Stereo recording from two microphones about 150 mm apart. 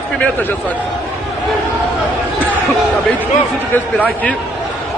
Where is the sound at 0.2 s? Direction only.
10° left (ahead or behind).